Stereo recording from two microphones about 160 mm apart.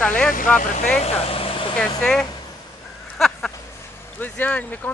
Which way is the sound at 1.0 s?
40° left (ahead or behind).